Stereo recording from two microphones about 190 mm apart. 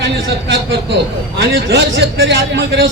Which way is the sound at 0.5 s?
60° right (ahead or behind).